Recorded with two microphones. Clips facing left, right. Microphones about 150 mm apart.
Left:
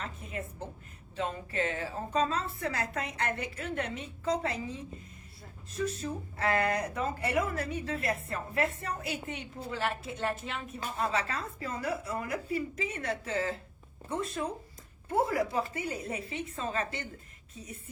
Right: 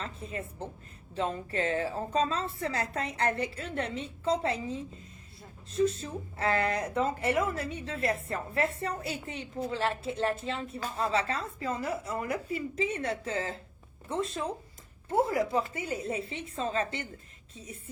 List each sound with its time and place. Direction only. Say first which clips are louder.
0.0 s a sound: right 1 dB; 30° right (ahead or behind)
1.1 s a woman's voice: right 2 dB; 35° right (ahead or behind)
5.7 s speech: right 5 dB; 30° right (ahead or behind)